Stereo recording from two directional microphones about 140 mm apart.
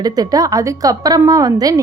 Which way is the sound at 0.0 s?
25° right (ahead or behind).